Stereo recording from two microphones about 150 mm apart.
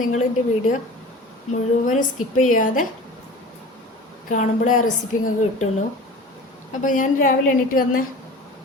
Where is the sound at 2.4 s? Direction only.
60° left (ahead or behind).